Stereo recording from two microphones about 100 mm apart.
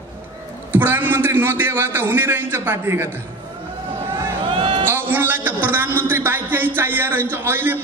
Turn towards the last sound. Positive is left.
turn(degrees=-20)  # may be behind; listen again after turning